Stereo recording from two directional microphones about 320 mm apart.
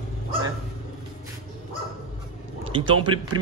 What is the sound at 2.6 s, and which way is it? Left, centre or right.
Speech, centre.